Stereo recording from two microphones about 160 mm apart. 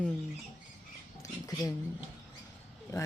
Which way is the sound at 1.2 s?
20° left (ahead or behind).